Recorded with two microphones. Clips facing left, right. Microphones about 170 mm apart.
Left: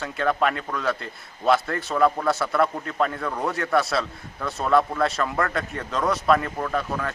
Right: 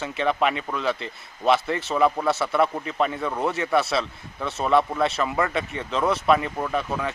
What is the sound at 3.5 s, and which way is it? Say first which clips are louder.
A man's voice: even; centre (ahead or behind).